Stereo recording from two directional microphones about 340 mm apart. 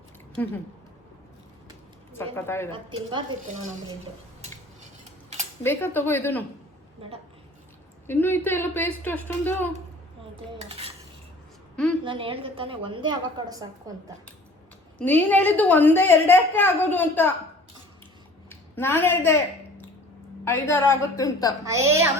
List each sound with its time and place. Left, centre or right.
2.1 s a woman's voice: centre
3.1 s a woman's voice: centre
5.6 s a woman's voice: centre
8.0 s a woman's voice: centre
10.3 s cutlery: centre
12.0 s a woman's voice: centre
14.9 s a woman's voice: centre
18.4 s a woman's voice: centre
20.4 s a woman's voice: centre
21.6 s a woman's voice: centre